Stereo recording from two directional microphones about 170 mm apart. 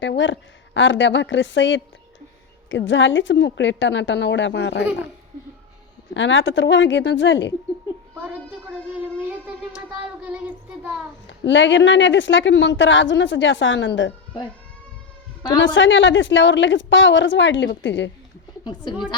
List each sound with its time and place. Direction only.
0.0 s speech: 90° left
6.1 s speech: 90° left
8.2 s music: 10° right (ahead or behind)
9.7 s child singing: 5° right (ahead or behind)
11.3 s speech: 90° left
15.6 s speech: 90° left
18.6 s speech: 25° left (ahead or behind)